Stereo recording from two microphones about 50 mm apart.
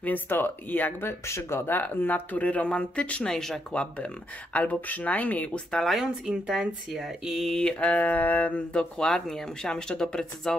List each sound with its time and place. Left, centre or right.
0.0 s speech: left
1.0 s speech: left
1.7 s speech: left
3.3 s speech: centre
3.7 s speech: left
5.9 s speech: centre
7.5 s speech: centre
7.9 s speech: left
8.7 s speech: centre